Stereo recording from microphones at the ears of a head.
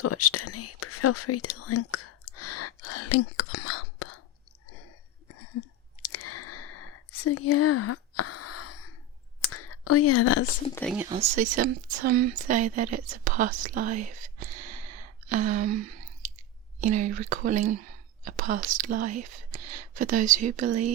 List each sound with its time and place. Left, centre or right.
0.0 s speech: left
5.3 s a sound: left
9.4 s speech: left
11.0 s speech: right